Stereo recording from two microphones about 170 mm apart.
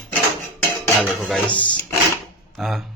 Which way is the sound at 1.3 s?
10° left (ahead or behind).